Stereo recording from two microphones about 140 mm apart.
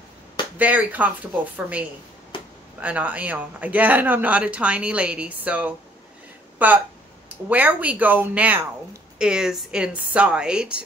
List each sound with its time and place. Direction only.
0.6 s speech: 10° right (ahead or behind)
2.3 s a sound: 40° left (ahead or behind)
2.8 s speech: 10° right (ahead or behind)